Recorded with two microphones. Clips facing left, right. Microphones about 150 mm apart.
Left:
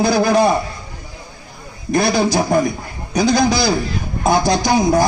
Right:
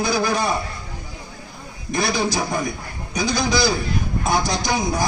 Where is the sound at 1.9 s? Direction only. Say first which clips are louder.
Left 6 dB; 60° left (ahead or behind).